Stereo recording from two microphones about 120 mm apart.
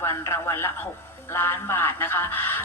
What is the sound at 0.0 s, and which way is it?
Speech, 20° left (ahead or behind).